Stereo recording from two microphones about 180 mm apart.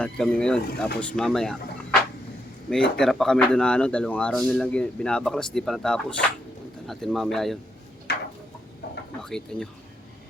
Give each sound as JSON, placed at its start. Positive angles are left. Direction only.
{"t": 0.0, "sound": "speech", "side_deg": 5}
{"t": 3.0, "sound": "speech", "side_deg": 0}
{"t": 8.1, "sound": "a sound", "side_deg": 75}
{"t": 9.2, "sound": "speech", "side_deg": 5}